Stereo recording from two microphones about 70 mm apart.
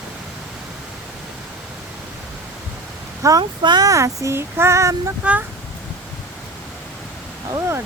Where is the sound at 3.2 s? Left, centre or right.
Right.